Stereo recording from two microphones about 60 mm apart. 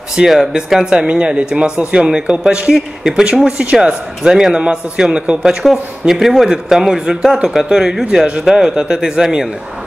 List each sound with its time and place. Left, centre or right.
0.1 s speech: centre